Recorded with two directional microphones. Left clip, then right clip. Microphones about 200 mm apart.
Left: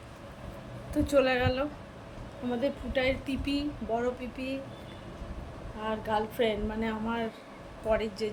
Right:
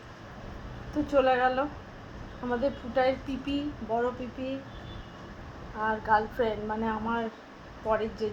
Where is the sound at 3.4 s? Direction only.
10° left (ahead or behind).